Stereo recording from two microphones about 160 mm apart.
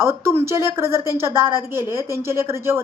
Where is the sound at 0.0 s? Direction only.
15° right (ahead or behind).